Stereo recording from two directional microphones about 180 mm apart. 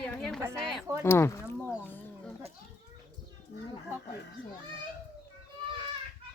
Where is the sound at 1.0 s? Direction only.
15° left (ahead or behind).